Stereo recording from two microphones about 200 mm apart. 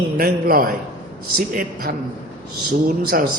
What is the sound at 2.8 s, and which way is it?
Speech, 45° right (ahead or behind).